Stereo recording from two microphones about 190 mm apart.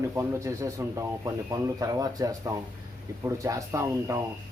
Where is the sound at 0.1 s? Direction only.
15° right (ahead or behind).